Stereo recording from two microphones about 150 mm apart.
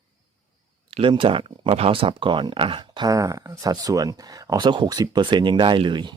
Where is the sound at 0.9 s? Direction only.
45° right (ahead or behind).